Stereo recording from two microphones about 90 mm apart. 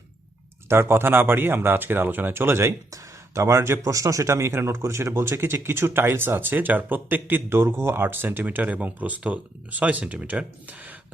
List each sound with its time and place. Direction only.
0.7 s speech: 25° right (ahead or behind)